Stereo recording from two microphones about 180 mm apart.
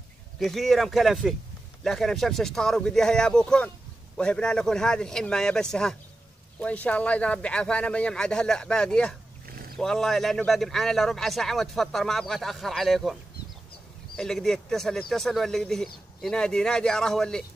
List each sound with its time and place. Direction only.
0.4 s speech: centre (ahead or behind)
9.5 s roaring cats: 55° right (ahead or behind)
9.8 s speech: centre (ahead or behind)
14.1 s speech: 5° left (ahead or behind)